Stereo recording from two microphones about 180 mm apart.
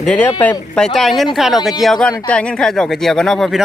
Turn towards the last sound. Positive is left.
turn(degrees=0)  # may be behind; listen again after turning